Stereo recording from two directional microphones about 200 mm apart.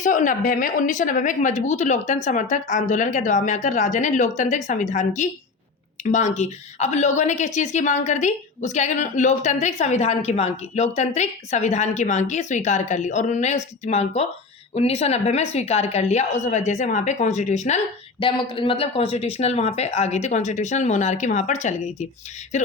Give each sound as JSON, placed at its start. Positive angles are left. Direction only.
{"t": 0.0, "sound": "a woman's voice", "side_deg": 40}